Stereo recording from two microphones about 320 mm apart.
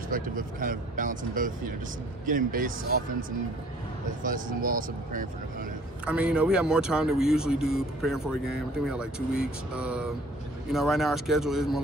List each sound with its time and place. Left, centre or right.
0.1 s speech: right
4.2 s speech: right
6.0 s speech: centre